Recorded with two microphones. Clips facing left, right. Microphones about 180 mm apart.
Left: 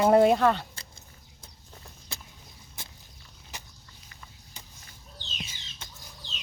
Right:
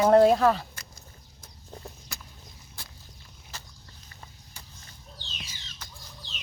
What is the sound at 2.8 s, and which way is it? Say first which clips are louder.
Walk: left 1 dB; 20° left (ahead or behind).